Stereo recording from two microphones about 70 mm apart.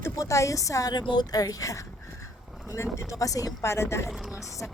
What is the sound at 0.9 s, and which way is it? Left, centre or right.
Speech, left.